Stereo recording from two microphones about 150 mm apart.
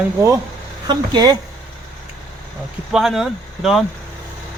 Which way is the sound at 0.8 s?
30° right (ahead or behind).